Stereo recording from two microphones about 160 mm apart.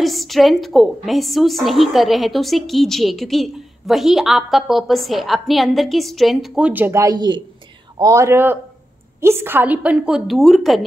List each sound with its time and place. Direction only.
0.0 s a woman's voice: centre (ahead or behind)